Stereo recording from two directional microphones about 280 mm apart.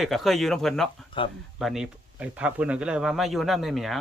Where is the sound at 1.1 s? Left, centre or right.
Centre.